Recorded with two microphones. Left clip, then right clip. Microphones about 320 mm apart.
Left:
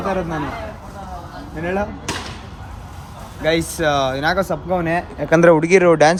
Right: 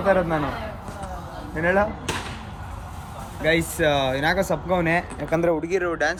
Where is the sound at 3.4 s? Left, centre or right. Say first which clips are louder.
Left 3 dB; centre.